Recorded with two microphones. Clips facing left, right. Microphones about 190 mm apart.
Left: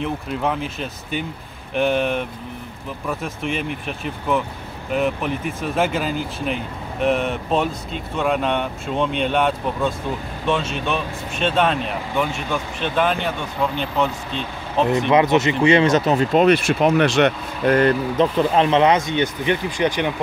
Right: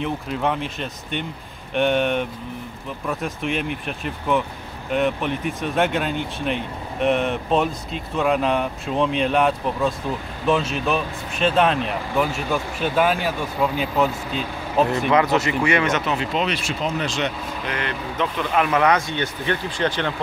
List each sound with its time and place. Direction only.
0.0 s speech: centre (ahead or behind)
15.0 s speech: 20° left (ahead or behind); by 17.7 s 65° left (ahead or behind)
17.7 s speech: 40° left (ahead or behind); by 20.2 s 15° left (ahead or behind)